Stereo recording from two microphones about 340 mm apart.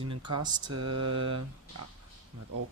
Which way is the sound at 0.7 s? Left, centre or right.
Right.